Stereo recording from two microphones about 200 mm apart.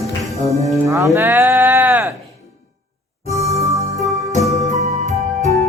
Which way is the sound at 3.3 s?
15° right (ahead or behind).